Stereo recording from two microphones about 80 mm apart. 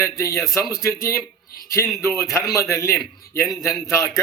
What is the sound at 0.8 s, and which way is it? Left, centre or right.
Speech, left.